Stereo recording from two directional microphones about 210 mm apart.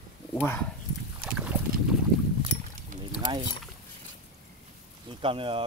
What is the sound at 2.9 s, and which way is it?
Boat, 40° right (ahead or behind).